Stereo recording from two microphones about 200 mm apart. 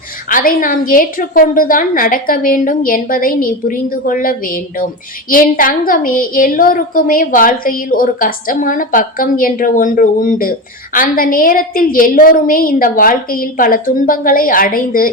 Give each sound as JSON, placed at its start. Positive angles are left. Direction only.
{"t": 0.3, "sound": "a woman's voice", "side_deg": 45}